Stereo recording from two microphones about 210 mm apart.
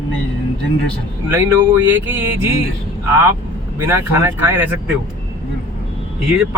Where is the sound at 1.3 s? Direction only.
10° right (ahead or behind).